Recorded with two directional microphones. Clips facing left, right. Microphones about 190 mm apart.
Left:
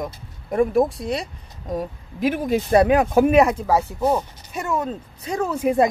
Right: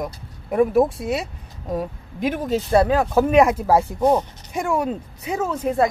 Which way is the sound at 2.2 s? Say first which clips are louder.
Left 1 dB; 10° left (ahead or behind).